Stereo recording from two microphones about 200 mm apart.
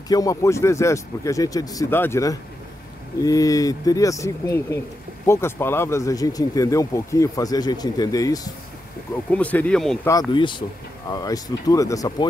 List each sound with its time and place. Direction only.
0.1 s speech: 15° left (ahead or behind)
9.3 s speech: 5° left (ahead or behind)
10.0 s speech: 20° left (ahead or behind)